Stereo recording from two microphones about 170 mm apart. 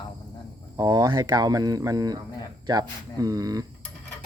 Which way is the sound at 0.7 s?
20° right (ahead or behind).